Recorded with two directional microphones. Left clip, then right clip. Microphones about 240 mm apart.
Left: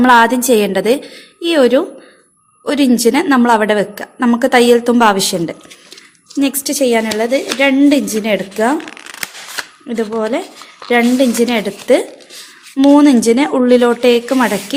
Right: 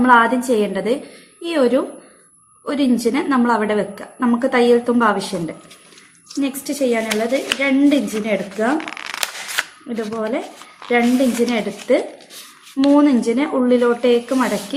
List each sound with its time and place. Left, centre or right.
0.0 s a woman's voice: left
8.8 s shuffling cards: centre
9.9 s a woman's voice: left
11.4 s a woman's voice: left